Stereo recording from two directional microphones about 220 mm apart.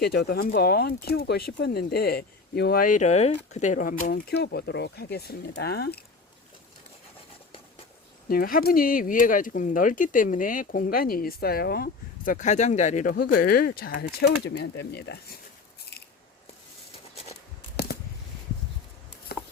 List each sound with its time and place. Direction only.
0.0 s speech: 45° left (ahead or behind)
8.3 s speech: 40° left (ahead or behind)